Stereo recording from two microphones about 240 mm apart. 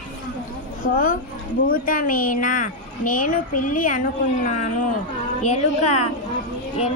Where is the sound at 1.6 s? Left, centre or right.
Left.